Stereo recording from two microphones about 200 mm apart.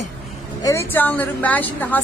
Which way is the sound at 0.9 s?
10° left (ahead or behind).